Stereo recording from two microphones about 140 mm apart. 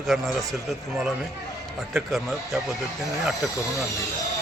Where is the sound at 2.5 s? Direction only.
5° right (ahead or behind).